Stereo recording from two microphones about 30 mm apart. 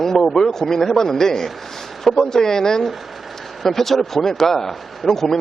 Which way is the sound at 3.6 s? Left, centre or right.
Centre.